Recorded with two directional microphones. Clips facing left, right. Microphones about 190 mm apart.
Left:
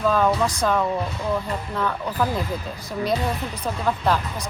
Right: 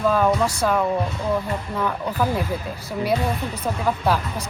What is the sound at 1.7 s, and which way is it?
Speech, 10° right (ahead or behind).